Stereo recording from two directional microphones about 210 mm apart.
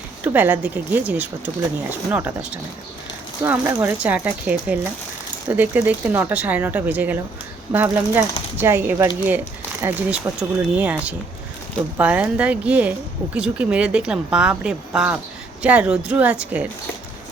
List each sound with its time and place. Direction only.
0.3 s speech: 10° right (ahead or behind)